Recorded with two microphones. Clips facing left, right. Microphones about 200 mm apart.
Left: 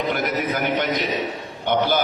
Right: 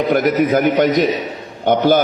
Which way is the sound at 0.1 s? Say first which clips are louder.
Right 9 dB; 45° right (ahead or behind).